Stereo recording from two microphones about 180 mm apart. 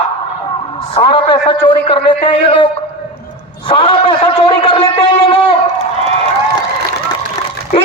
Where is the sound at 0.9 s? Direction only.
30° left (ahead or behind).